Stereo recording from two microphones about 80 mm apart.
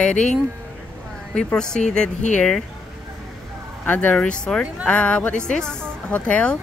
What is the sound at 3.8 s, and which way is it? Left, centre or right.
Speech, left.